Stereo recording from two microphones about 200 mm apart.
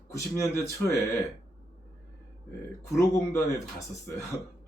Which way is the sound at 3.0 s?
15° left (ahead or behind).